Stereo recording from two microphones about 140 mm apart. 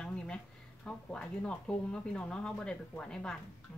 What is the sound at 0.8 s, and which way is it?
Speech, 5° left (ahead or behind).